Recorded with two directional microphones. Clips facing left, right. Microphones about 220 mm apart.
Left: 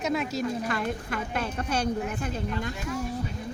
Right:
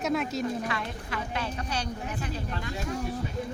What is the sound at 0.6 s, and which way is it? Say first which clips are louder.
A woman's voice: left 4 dB; 50° left (ahead or behind).